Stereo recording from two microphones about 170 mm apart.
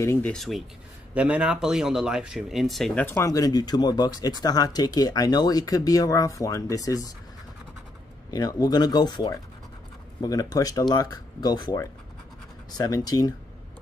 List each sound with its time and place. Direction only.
0.0 s speech: 15° left (ahead or behind)
0.3 s speech: centre (ahead or behind)
3.3 s speech: 20° left (ahead or behind)
8.3 s speech: 20° left (ahead or behind)